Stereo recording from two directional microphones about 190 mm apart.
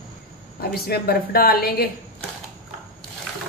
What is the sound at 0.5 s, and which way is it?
A woman's voice, 55° left (ahead or behind).